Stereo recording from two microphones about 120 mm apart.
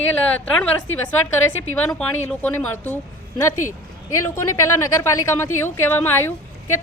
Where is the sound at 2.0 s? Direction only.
10° left (ahead or behind).